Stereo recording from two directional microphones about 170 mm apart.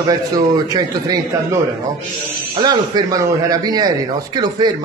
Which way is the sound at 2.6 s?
25° right (ahead or behind).